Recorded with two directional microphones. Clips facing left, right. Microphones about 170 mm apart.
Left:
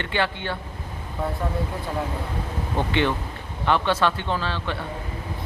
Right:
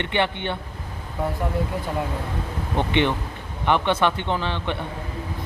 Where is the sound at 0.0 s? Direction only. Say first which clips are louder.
Right 2 dB; 20° right (ahead or behind).